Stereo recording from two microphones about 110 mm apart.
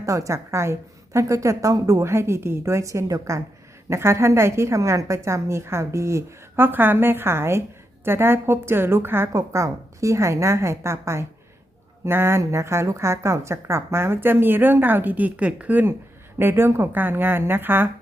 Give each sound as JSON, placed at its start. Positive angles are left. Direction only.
{"t": 0.0, "sound": "a woman's voice", "side_deg": -30}